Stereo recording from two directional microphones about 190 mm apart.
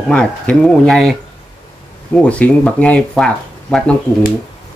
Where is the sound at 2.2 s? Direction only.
5° left (ahead or behind).